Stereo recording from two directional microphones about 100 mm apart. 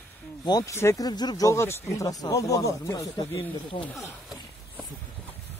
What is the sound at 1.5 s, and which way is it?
Speech, 30° left (ahead or behind).